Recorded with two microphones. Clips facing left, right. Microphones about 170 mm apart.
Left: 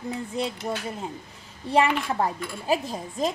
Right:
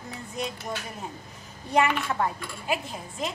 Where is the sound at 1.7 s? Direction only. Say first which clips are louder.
Left 2 dB; 30° left (ahead or behind).